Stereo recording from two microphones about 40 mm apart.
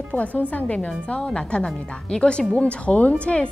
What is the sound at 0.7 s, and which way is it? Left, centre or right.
A woman's voice, left.